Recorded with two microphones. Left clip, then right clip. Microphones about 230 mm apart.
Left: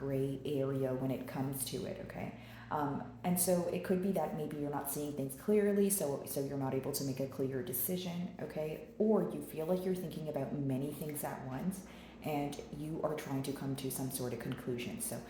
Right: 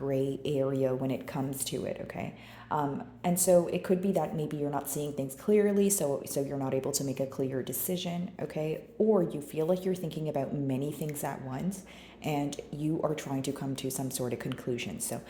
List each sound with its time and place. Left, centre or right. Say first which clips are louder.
0.1 s speech: right 6 dB; right
2.7 s speech: right 5 dB; right